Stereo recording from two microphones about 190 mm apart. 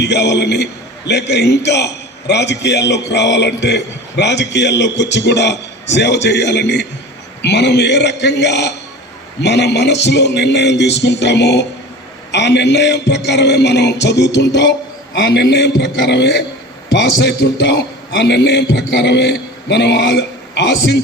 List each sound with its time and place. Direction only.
0.0 s a man's voice: 65° left (ahead or behind)